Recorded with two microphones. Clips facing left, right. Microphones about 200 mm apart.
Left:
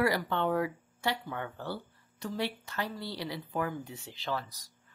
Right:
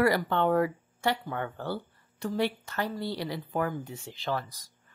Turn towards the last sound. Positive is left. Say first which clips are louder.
# right 3 dB
turn(degrees=-50)  # may be behind; listen again after turning